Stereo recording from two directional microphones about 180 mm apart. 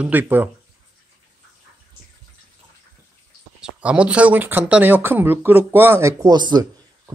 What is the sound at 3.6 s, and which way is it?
Speech, 5° right (ahead or behind).